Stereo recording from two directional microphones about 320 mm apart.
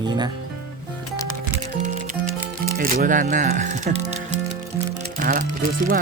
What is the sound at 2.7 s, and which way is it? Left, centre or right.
Speech, right.